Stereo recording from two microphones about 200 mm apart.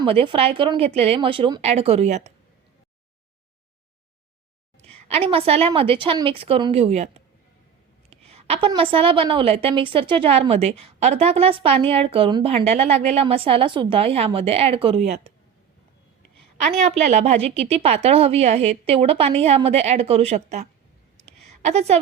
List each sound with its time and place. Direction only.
0.0 s a woman's voice: 25° right (ahead or behind)
4.8 s a woman's voice: 30° right (ahead or behind)
8.1 s a woman's voice: 30° right (ahead or behind)
16.7 s a woman's voice: 35° right (ahead or behind)
21.2 s a sound: 35° right (ahead or behind)